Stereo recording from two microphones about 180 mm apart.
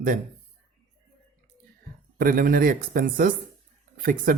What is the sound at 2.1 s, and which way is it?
Speech, 55° right (ahead or behind).